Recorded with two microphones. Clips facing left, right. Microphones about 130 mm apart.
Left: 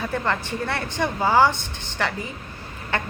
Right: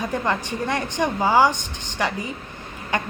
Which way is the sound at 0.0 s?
15° right (ahead or behind).